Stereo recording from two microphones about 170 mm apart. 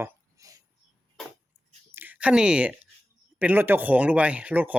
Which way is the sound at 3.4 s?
10° right (ahead or behind).